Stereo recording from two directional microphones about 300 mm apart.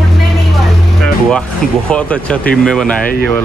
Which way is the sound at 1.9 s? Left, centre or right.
Centre.